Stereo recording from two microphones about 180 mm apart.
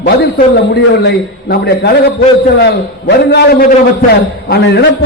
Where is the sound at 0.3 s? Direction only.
60° left (ahead or behind).